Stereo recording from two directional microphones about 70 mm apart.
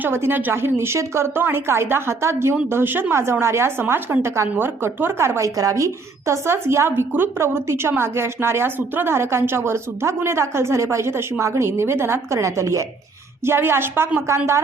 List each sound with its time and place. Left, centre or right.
0.0 s a woman's voice: right
13.4 s a woman's voice: right